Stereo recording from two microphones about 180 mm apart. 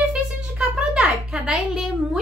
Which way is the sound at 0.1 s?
5° right (ahead or behind).